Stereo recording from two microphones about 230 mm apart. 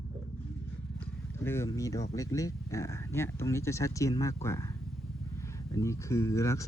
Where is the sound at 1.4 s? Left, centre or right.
Centre.